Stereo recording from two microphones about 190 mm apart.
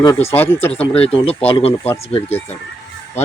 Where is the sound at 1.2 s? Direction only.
30° left (ahead or behind).